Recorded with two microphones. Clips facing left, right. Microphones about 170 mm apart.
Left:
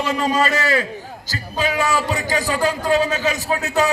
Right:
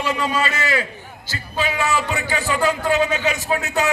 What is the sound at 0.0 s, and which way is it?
A man's voice, 40° left (ahead or behind).